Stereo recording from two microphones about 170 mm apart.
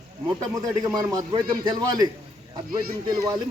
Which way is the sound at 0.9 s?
20° right (ahead or behind).